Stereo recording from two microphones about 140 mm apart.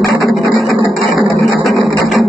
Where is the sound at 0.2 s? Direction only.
Centre (ahead or behind).